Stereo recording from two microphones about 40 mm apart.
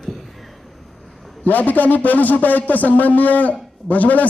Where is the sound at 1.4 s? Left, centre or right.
Left.